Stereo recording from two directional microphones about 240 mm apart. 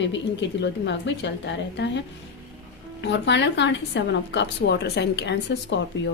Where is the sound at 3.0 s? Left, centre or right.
Left.